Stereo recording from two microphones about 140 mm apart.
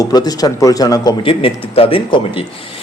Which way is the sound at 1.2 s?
40° left (ahead or behind).